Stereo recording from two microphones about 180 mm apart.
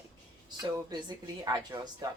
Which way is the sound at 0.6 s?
20° right (ahead or behind).